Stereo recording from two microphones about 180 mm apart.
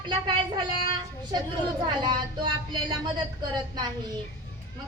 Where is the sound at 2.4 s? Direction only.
25° right (ahead or behind).